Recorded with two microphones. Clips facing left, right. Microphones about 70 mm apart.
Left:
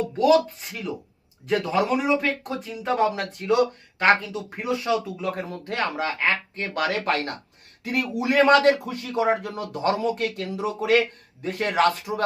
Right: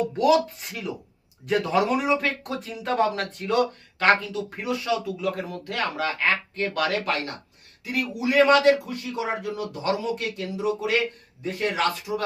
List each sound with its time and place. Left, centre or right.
0.2 s speech: centre
3.9 s speech: left
7.9 s speech: left